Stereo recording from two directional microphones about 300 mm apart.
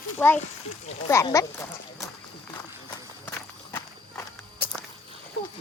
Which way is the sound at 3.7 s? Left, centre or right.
Centre.